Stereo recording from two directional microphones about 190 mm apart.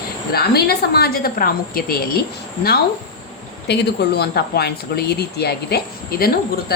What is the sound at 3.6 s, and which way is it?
A woman's voice, 60° left (ahead or behind).